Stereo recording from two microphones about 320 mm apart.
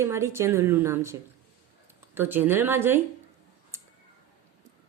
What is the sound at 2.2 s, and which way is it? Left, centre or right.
Speech, centre.